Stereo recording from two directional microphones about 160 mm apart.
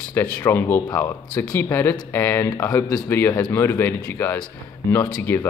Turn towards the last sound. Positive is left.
turn(degrees=10)  # may be behind; listen again after turning